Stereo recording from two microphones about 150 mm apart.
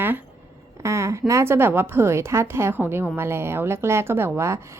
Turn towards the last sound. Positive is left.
turn(degrees=-20)  # may be behind; listen again after turning